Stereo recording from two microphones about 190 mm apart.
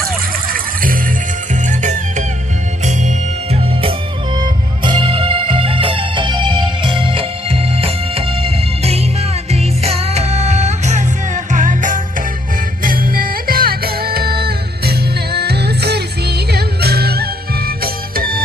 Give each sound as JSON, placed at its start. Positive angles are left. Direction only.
{"t": 0.5, "sound": "music", "side_deg": -45}